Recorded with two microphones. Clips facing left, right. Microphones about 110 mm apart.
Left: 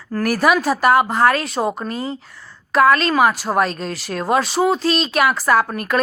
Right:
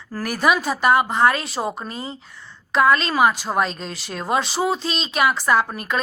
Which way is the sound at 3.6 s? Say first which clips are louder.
Left 5 dB; 50° left (ahead or behind).